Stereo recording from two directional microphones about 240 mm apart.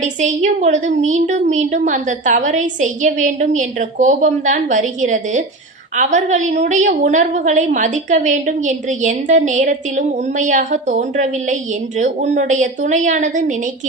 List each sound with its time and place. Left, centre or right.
0.0 s a woman's voice: right